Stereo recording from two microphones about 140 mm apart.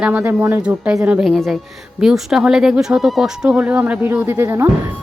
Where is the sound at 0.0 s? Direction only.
10° right (ahead or behind).